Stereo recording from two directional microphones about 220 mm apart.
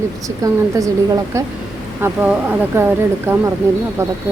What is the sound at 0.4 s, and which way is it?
Speech, 15° right (ahead or behind).